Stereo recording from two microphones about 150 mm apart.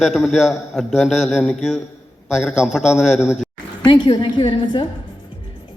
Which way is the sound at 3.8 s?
30° left (ahead or behind).